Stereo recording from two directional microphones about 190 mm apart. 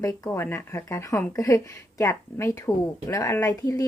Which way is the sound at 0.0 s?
15° left (ahead or behind).